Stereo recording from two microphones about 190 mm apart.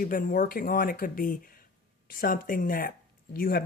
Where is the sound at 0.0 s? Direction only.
45° left (ahead or behind).